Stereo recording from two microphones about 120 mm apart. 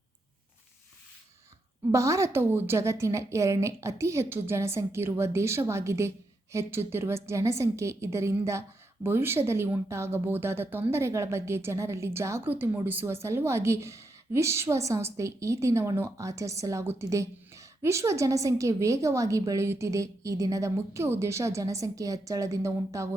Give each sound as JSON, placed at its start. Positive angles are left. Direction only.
{"t": 1.9, "sound": "a woman's voice", "side_deg": -25}